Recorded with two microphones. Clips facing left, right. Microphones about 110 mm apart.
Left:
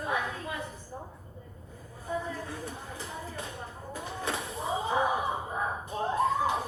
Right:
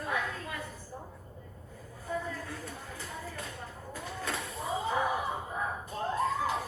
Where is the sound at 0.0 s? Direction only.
20° left (ahead or behind).